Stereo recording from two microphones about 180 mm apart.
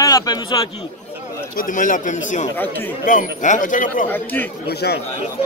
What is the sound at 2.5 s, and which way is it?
Speech, 10° left (ahead or behind).